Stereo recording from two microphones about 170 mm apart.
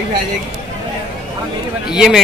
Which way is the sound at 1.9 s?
5° right (ahead or behind).